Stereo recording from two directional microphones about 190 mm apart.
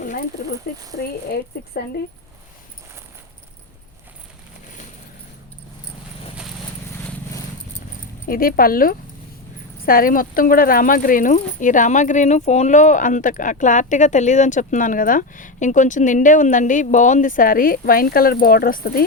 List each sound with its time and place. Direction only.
0.7 s speech: 50° left (ahead or behind)
8.3 s speech: 50° left (ahead or behind)